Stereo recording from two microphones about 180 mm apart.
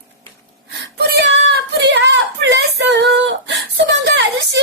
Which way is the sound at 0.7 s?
70° right (ahead or behind).